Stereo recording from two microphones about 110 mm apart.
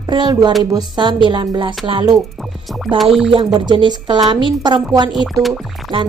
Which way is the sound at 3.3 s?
50° right (ahead or behind).